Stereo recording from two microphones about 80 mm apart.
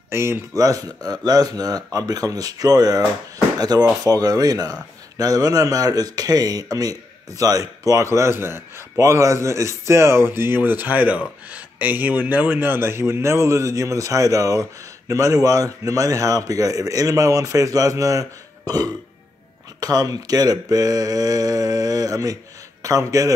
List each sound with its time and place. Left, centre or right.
0.1 s speech: right
0.6 s speech: right